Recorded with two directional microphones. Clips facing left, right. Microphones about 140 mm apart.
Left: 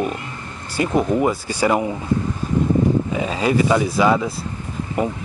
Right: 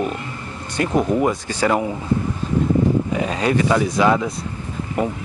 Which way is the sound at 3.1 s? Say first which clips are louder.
Even; 5° left (ahead or behind).